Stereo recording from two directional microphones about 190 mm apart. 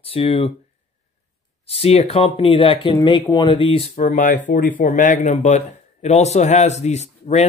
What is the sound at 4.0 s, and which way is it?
A man's voice, 45° left (ahead or behind).